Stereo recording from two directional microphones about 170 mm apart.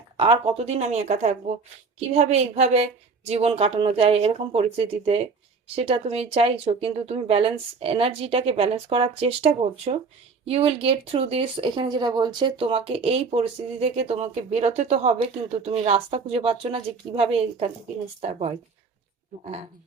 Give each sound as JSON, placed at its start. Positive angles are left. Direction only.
{"t": 0.2, "sound": "speech", "side_deg": -35}